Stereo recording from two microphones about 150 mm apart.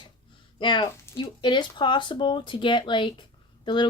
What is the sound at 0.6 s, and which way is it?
Speech, 35° left (ahead or behind).